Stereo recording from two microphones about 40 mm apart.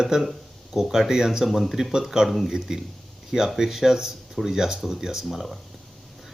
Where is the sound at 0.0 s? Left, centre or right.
Centre.